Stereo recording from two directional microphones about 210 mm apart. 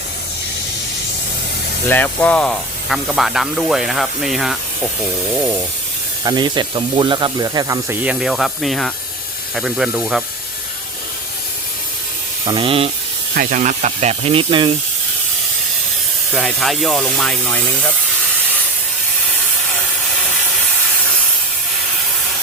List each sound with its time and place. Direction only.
1.9 s speech: 10° left (ahead or behind)
6.2 s speech: 20° right (ahead or behind); by 10.2 s centre (ahead or behind)
12.5 s speech: 25° right (ahead or behind)
13.3 s speech: 40° right (ahead or behind); by 14.7 s 25° right (ahead or behind)
16.3 s speech: centre (ahead or behind)